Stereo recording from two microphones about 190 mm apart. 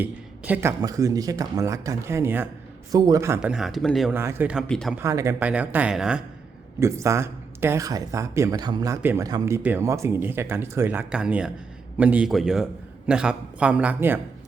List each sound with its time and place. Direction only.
0.0 s a sound: 10° right (ahead or behind)
0.8 s speech: 20° right (ahead or behind); by 4.1 s centre (ahead or behind)
4.1 s speech: 10° right (ahead or behind)
4.6 s speech: 5° left (ahead or behind)
4.9 s speech: 15° right (ahead or behind)
6.7 s speech: 15° right (ahead or behind)